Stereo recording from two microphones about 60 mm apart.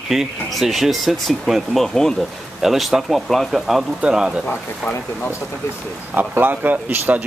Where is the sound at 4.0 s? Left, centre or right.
Centre.